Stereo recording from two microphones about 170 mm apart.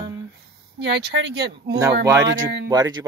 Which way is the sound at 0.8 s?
80° right.